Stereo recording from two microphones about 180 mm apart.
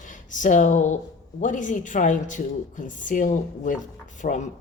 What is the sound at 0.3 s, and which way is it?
Speech, 45° left (ahead or behind).